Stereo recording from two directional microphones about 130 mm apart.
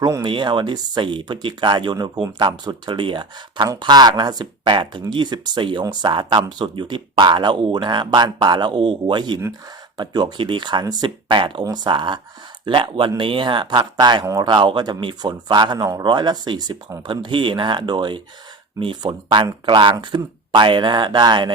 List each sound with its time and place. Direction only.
0.2 s speech: 40° right (ahead or behind)